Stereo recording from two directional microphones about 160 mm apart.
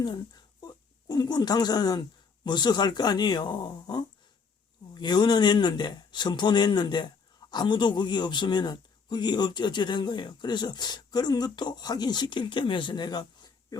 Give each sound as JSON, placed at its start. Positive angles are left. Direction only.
{"t": 0.0, "sound": "speech", "side_deg": 25}